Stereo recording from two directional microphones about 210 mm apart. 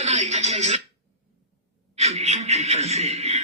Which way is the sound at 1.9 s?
30° right (ahead or behind).